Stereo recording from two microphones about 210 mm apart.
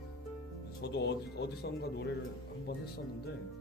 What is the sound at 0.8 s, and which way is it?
Speech, 55° left (ahead or behind).